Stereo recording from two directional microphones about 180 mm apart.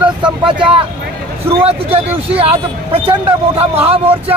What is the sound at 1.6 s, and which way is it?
A man's voice, 30° right (ahead or behind).